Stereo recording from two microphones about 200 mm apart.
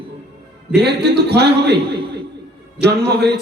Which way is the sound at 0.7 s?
55° right (ahead or behind).